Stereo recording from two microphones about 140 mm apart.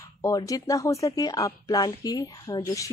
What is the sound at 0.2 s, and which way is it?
Speech, 25° left (ahead or behind).